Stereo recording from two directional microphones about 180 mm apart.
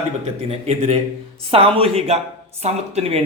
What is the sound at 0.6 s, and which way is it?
A man's voice, 35° right (ahead or behind).